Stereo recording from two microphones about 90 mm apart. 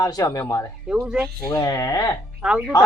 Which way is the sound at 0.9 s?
10° right (ahead or behind).